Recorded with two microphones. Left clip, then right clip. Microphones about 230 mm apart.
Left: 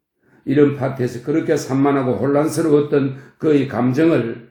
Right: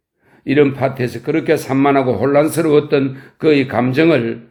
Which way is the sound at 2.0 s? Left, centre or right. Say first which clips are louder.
Right 4 dB; right.